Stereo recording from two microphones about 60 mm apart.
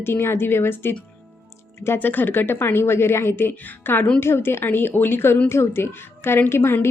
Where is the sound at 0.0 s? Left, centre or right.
Left.